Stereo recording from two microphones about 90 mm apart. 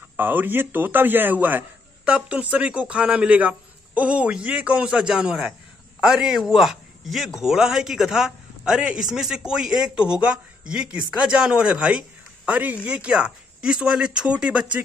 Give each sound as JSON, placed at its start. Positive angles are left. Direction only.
{"t": 0.2, "sound": "a man's voice", "side_deg": -20}